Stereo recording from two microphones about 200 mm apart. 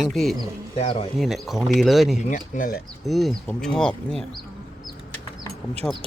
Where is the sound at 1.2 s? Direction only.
Centre (ahead or behind).